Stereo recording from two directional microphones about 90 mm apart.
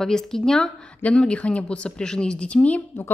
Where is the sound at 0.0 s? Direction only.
5° left (ahead or behind).